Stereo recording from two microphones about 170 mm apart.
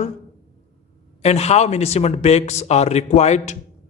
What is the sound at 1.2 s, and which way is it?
Speech, 40° left (ahead or behind).